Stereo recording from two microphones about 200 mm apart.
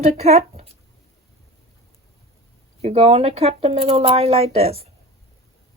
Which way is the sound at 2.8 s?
30° right (ahead or behind).